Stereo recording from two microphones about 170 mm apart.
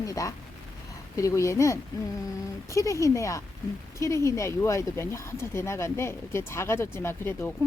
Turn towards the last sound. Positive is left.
turn(degrees=15)  # may be behind; listen again after turning